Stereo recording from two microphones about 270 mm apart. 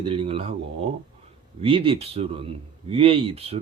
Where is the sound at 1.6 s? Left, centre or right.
Centre.